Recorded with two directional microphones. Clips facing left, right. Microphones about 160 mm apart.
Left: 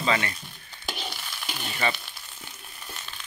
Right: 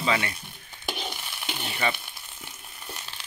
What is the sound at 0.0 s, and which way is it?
Speech, 10° right (ahead or behind).